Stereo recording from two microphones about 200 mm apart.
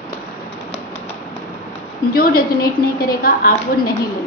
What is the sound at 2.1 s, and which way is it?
A woman's voice, 50° left (ahead or behind).